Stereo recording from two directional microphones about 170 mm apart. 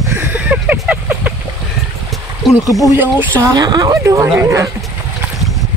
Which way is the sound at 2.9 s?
10° right (ahead or behind).